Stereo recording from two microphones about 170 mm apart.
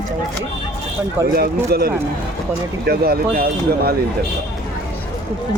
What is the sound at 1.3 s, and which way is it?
Speech, 65° right (ahead or behind).